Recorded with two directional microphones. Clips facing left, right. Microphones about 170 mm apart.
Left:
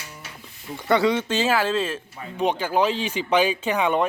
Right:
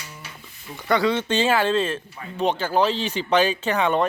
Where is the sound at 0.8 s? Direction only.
20° left (ahead or behind).